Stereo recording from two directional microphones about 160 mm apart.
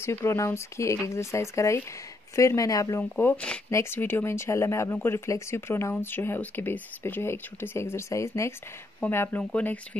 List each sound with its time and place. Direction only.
0.0 s speech: 15° left (ahead or behind)